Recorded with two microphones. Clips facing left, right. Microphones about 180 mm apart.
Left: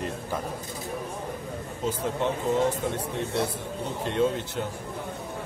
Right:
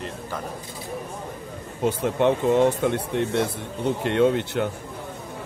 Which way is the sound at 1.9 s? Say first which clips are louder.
Right 7 dB; 65° right (ahead or behind).